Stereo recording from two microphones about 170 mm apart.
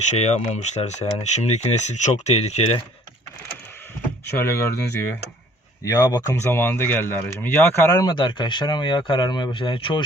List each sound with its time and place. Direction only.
0.1 s speech: 40° left (ahead or behind)
4.4 s speech: 15° left (ahead or behind); by 10.0 s 30° left (ahead or behind)